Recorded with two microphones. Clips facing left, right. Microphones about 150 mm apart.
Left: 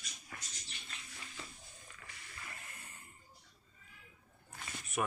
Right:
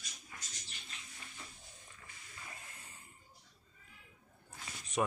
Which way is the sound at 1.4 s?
90° left.